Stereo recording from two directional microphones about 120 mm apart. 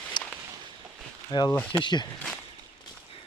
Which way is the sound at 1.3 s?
40° left (ahead or behind).